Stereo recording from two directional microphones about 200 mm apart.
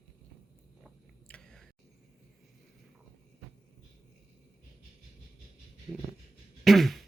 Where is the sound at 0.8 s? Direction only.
5° left (ahead or behind).